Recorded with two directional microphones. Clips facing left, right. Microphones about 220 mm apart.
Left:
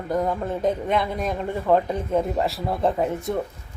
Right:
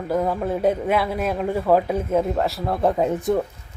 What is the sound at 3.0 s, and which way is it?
Speech, 20° right (ahead or behind).